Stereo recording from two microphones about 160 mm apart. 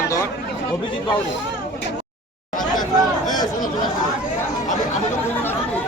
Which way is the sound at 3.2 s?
25° left (ahead or behind).